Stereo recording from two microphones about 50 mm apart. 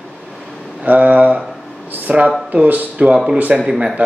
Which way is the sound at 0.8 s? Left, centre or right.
Right.